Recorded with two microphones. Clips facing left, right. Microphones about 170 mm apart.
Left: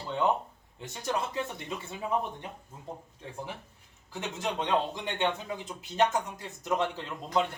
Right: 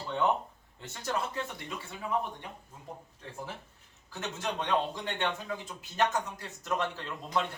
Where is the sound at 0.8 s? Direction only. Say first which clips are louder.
Left 2 dB; 15° left (ahead or behind).